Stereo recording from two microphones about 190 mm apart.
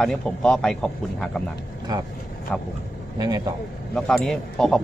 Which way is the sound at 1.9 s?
20° right (ahead or behind).